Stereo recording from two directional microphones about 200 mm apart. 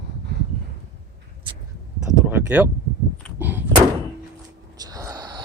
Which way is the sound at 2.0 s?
10° right (ahead or behind).